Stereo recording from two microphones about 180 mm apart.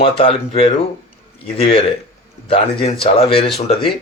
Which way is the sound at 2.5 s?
35° left (ahead or behind).